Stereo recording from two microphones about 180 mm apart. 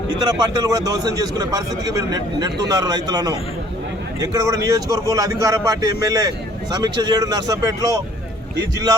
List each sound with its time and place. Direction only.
0.2 s a man's voice: 25° right (ahead or behind)